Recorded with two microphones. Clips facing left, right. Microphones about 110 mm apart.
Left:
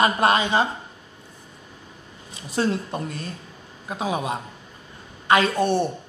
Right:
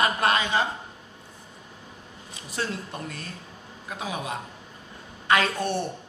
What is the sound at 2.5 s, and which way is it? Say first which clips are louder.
A man's voice: left 8 dB; 25° left (ahead or behind).